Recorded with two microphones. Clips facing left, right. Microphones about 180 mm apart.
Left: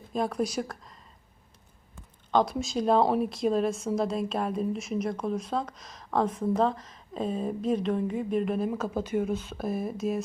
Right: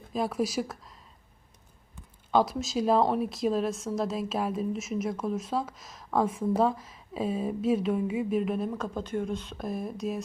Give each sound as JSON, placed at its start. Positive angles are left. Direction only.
{"t": 0.1, "sound": "speech", "side_deg": -5}
{"t": 2.3, "sound": "speech", "side_deg": 0}